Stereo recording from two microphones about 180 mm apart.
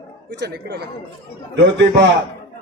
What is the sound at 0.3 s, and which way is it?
Speech, 65° right (ahead or behind).